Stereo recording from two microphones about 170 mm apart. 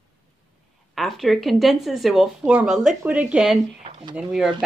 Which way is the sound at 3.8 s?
35° right (ahead or behind).